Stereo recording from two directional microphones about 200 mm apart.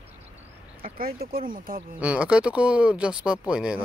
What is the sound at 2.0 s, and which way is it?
Speech, 5° right (ahead or behind).